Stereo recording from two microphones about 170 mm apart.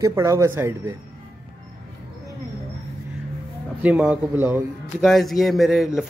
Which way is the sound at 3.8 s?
10° right (ahead or behind).